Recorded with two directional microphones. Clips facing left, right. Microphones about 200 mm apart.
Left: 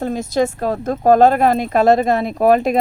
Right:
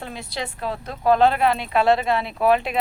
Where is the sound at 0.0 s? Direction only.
45° left (ahead or behind).